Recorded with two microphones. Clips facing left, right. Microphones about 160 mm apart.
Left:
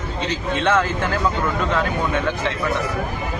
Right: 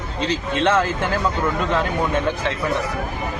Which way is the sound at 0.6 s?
30° right (ahead or behind).